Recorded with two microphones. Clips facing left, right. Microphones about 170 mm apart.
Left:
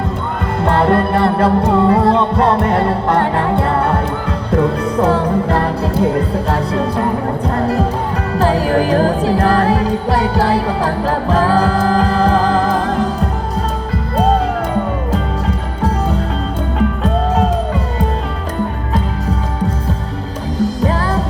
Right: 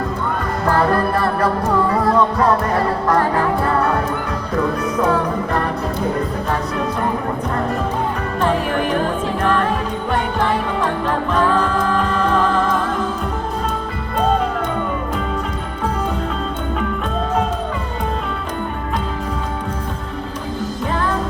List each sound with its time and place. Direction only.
0.6 s music: 25° left (ahead or behind)